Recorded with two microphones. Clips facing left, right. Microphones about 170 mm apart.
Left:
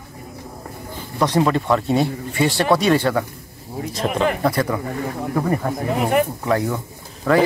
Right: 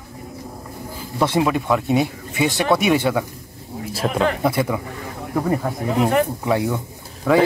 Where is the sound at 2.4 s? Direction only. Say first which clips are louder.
Left 1 dB; 20° right (ahead or behind).